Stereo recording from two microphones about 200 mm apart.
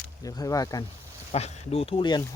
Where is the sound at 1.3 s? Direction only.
30° left (ahead or behind).